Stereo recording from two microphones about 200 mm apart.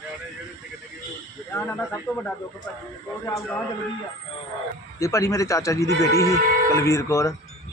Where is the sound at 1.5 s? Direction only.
5° left (ahead or behind).